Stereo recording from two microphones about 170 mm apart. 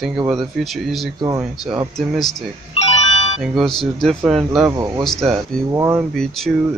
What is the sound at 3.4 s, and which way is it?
Speech, centre (ahead or behind).